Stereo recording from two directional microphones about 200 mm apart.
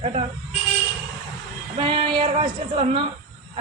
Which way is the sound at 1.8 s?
25° right (ahead or behind).